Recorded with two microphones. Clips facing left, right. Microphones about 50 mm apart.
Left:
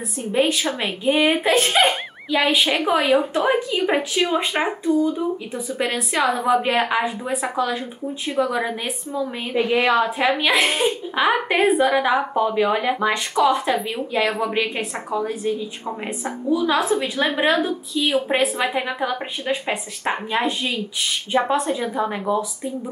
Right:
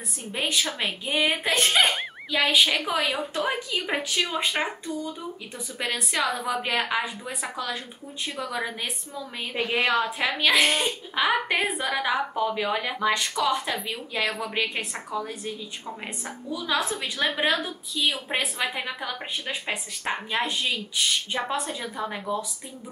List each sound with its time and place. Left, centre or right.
0.3 s a woman's voice: centre